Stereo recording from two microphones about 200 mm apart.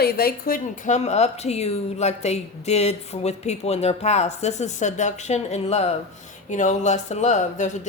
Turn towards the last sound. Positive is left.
turn(degrees=35)  # may be behind; listen again after turning